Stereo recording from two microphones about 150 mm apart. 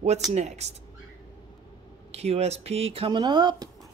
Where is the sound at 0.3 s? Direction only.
50° right (ahead or behind).